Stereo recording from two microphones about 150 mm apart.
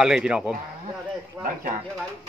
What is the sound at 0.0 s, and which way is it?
Speech, 5° right (ahead or behind).